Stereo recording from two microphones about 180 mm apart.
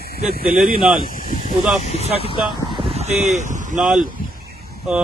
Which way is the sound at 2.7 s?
30° right (ahead or behind).